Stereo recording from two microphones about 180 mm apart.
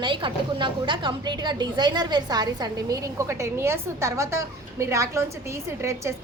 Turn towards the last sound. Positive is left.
turn(degrees=-15)  # may be behind; listen again after turning